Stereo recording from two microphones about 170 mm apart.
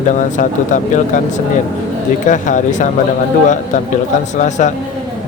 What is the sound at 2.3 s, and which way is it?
Speech, 45° left (ahead or behind).